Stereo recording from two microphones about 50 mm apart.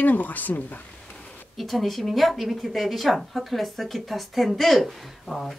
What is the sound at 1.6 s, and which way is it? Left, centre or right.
Speech, centre.